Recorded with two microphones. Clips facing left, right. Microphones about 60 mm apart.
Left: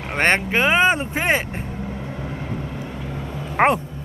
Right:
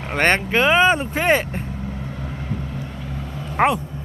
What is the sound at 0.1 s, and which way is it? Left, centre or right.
Speech, centre.